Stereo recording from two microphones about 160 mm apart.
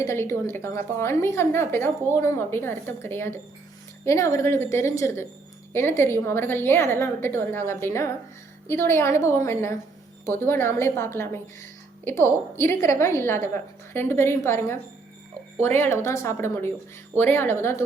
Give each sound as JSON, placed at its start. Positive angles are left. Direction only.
{"t": 0.0, "sound": "a woman's voice", "side_deg": 15}